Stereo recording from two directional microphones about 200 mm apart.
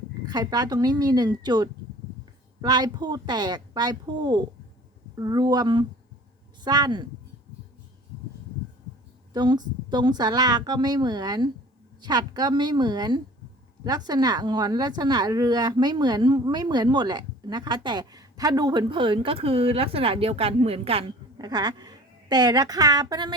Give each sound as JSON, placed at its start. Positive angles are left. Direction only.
{"t": 0.3, "sound": "a woman's voice", "side_deg": -20}
{"t": 9.3, "sound": "a woman's voice", "side_deg": -20}